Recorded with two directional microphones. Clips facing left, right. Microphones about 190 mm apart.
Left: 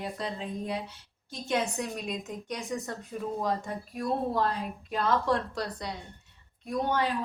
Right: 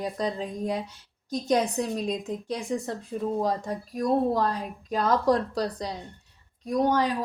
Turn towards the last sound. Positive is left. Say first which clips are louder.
# right 5 dB
turn(degrees=-40)  # may be behind; listen again after turning